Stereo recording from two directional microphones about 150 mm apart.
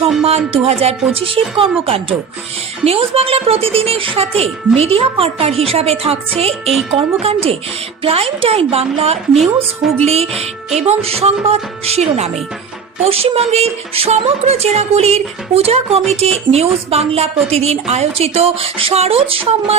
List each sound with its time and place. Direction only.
0.2 s a woman's voice: 40° right (ahead or behind)
2.8 s a woman's voice: 40° right (ahead or behind)
10.0 s music: 45° right (ahead or behind)